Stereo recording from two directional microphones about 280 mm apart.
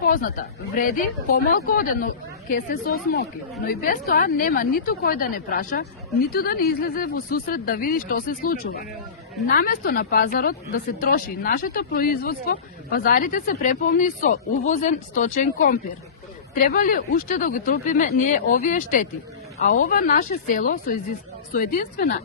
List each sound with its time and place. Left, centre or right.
0.0 s a woman's voice: left